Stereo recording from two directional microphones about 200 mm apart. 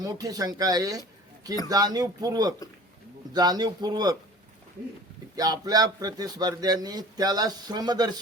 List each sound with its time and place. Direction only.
0.0 s a man's voice: 20° right (ahead or behind)
5.4 s a man's voice: 20° right (ahead or behind)